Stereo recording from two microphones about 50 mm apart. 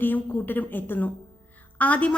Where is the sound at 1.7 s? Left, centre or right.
Left.